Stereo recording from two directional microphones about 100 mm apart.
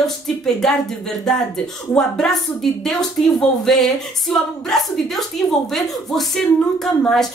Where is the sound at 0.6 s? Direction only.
5° left (ahead or behind).